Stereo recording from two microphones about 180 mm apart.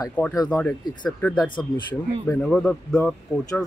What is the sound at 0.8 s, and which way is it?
Speech, 25° left (ahead or behind).